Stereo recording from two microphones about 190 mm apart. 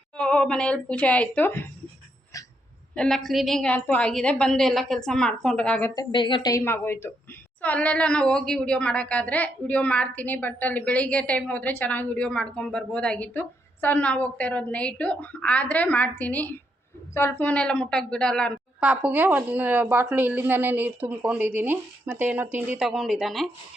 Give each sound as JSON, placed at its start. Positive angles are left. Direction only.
{"t": 0.2, "sound": "a woman's voice", "side_deg": 5}
{"t": 2.9, "sound": "a woman's voice", "side_deg": 5}
{"t": 5.9, "sound": "a woman's voice", "side_deg": 20}
{"t": 18.9, "sound": "a woman's voice", "side_deg": -10}